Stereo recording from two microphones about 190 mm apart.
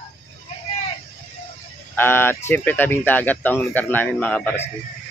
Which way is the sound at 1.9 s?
10° left (ahead or behind).